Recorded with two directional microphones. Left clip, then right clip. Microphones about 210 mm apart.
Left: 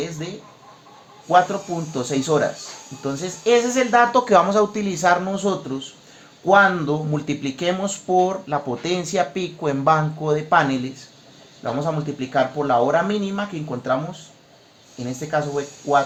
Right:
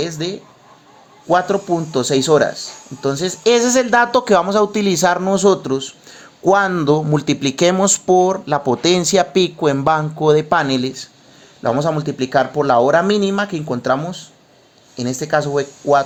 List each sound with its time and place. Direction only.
0.2 s speech: 40° right (ahead or behind)